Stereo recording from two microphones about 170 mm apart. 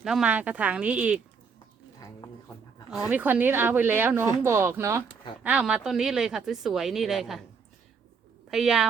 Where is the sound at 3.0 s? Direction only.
10° right (ahead or behind).